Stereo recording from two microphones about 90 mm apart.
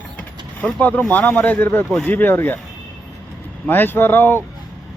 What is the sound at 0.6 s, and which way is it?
Speech, 20° left (ahead or behind).